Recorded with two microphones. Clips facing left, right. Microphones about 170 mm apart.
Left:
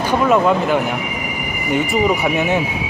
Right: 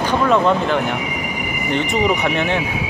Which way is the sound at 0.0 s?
10° left (ahead or behind).